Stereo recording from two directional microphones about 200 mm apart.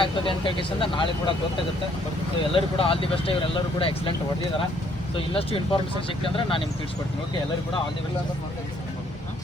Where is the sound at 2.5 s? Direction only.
25° left (ahead or behind).